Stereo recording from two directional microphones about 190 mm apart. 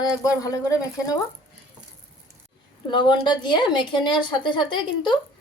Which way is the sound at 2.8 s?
25° left (ahead or behind).